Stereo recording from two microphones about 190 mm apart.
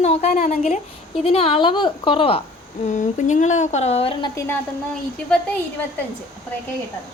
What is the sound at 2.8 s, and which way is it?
A woman's voice, 40° left (ahead or behind).